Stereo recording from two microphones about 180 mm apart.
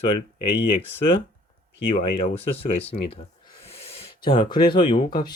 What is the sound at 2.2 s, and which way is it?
Speech, 35° left (ahead or behind).